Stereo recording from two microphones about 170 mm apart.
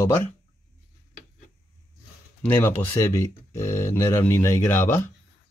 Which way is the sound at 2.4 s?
15° left (ahead or behind).